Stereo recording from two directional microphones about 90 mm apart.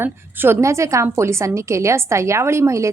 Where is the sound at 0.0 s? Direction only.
25° right (ahead or behind).